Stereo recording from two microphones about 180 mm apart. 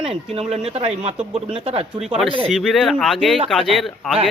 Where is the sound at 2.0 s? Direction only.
5° right (ahead or behind).